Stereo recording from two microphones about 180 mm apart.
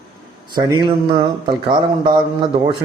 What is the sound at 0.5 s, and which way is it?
A man's voice, 25° right (ahead or behind).